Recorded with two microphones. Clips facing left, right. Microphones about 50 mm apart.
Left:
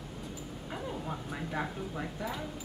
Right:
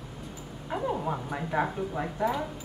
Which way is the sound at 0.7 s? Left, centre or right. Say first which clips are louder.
Right 9 dB; right.